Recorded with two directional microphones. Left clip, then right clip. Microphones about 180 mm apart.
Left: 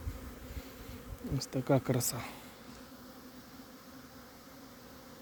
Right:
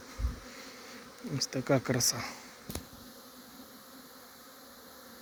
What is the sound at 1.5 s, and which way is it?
Speech, 15° left (ahead or behind).